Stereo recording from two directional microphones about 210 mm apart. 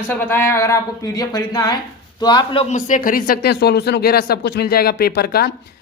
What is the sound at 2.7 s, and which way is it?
Speech, 40° left (ahead or behind).